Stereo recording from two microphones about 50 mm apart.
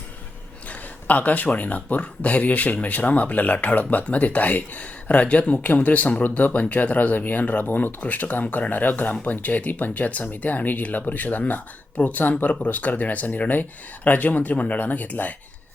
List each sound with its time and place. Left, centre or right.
0.7 s speech: left